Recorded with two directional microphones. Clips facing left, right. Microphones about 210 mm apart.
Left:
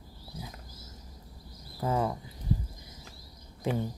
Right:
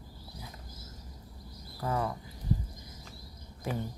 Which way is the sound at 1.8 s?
20° left (ahead or behind).